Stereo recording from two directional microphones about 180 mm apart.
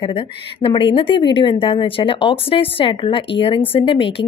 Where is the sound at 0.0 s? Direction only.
30° left (ahead or behind).